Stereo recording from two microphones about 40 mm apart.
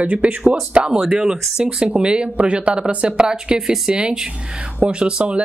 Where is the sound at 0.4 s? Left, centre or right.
Centre.